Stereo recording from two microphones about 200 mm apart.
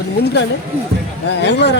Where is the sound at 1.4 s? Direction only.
60° left (ahead or behind).